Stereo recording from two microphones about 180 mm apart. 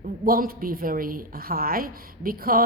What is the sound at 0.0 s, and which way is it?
A woman's voice, 55° right (ahead or behind).